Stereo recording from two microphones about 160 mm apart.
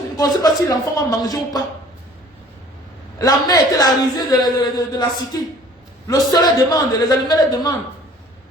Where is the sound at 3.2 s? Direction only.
20° left (ahead or behind).